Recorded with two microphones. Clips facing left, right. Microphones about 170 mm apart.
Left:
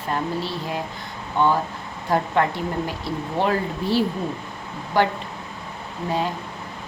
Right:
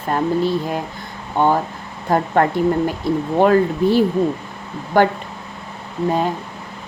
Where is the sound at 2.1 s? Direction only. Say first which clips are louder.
Right 4 dB; 50° right (ahead or behind).